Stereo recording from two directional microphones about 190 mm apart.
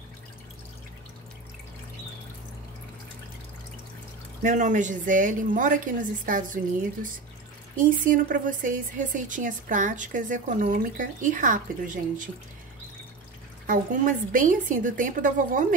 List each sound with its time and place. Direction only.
4.4 s a woman's voice: 40° right (ahead or behind)
13.7 s a woman's voice: 45° right (ahead or behind)